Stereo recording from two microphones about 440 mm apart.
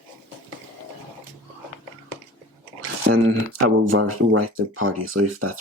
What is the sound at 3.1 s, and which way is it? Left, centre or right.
Speech, right.